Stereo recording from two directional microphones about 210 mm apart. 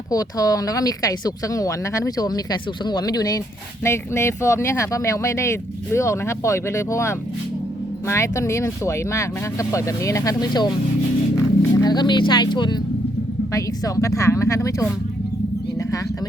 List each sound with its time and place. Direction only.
0.1 s speech: 15° left (ahead or behind)